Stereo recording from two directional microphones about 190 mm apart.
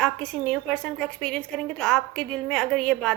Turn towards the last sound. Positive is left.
turn(degrees=5)  # may be behind; listen again after turning